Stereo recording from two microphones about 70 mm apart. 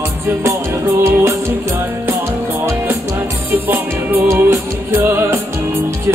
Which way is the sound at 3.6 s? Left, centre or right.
Right.